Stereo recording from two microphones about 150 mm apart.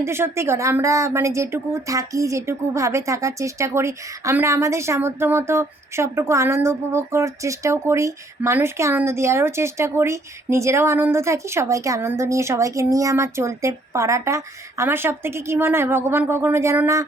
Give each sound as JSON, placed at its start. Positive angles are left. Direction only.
{"t": 0.0, "sound": "speech", "side_deg": -15}